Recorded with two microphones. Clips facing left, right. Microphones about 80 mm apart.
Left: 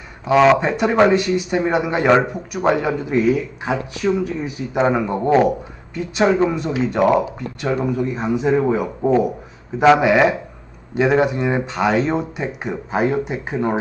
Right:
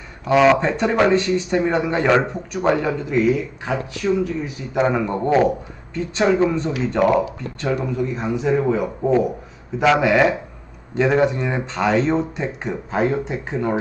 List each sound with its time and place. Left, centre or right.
0.3 s speech: centre